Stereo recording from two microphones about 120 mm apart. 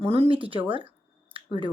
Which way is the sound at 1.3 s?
45° right (ahead or behind).